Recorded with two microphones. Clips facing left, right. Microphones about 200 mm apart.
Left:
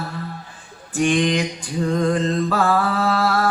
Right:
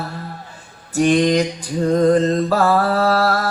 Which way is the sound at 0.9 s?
40° right (ahead or behind).